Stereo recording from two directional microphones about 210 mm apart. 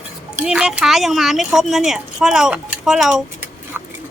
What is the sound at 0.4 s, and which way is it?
Speech, 5° right (ahead or behind).